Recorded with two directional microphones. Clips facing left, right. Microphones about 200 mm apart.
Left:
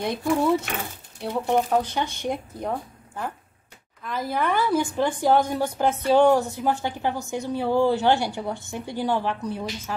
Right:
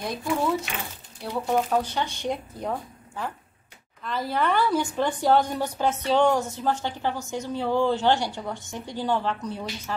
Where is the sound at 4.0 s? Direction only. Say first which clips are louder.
Even; 10° left (ahead or behind).